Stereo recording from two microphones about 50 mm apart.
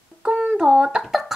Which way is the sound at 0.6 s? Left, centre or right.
Centre.